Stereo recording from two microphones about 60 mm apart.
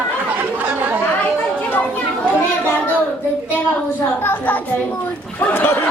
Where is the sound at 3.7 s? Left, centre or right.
Left.